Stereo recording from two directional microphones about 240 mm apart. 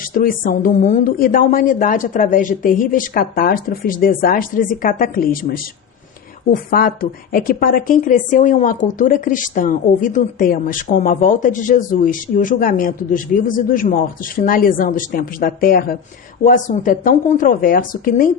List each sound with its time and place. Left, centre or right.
0.0 s a woman's voice: left